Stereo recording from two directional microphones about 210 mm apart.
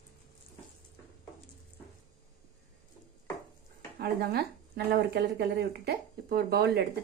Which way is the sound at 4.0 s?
50° right (ahead or behind).